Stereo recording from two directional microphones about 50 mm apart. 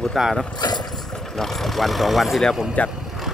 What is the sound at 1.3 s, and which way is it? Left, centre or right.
Speech, centre.